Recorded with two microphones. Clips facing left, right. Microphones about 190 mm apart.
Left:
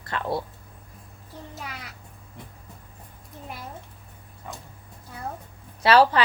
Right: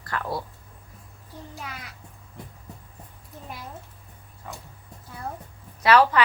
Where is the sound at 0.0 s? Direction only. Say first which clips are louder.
Left 2 dB; 25° left (ahead or behind).